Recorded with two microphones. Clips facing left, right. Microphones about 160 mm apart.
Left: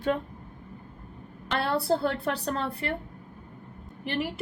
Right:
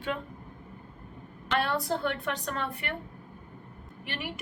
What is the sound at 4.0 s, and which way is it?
Speech, 35° left (ahead or behind).